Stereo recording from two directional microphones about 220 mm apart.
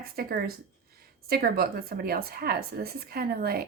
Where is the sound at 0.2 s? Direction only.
45° right (ahead or behind).